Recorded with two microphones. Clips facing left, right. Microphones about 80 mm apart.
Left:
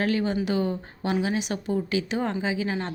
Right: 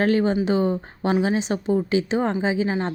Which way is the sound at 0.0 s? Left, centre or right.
Right.